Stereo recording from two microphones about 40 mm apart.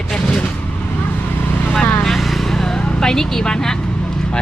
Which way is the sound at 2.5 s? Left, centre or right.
Centre.